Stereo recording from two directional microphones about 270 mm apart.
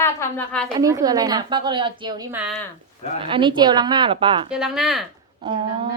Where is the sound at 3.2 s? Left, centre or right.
Centre.